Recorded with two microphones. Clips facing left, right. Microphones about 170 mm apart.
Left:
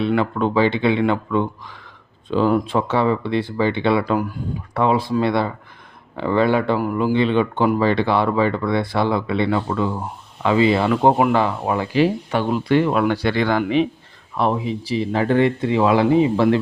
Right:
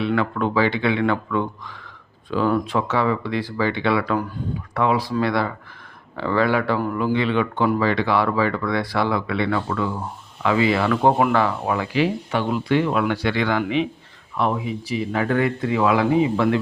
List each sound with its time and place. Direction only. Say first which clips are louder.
0.2 s speech: left 2 dB; 30° left (ahead or behind)
11.9 s speech: left 5 dB; 40° left (ahead or behind)